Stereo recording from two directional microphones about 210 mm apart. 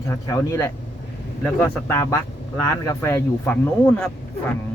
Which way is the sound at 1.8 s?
15° left (ahead or behind).